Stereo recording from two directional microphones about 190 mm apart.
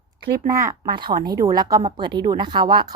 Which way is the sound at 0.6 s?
20° right (ahead or behind).